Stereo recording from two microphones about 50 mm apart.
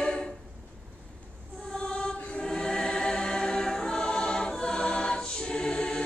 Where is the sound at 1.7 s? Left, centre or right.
Centre.